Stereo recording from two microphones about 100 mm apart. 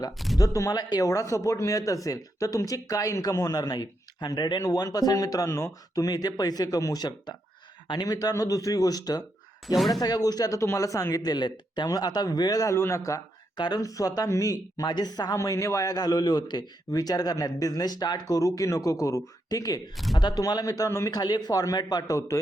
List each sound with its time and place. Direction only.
0.3 s speech: 35° left (ahead or behind)
13.6 s speech: 40° left (ahead or behind)
15.4 s speech: 30° left (ahead or behind)
21.2 s speech: 45° left (ahead or behind)